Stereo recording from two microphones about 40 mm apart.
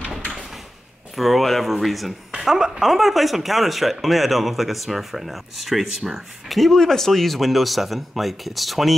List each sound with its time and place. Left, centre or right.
1.1 s speech: centre
2.3 s speech: centre
2.9 s speech: centre